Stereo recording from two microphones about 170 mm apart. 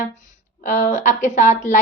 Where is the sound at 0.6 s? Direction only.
50° left (ahead or behind).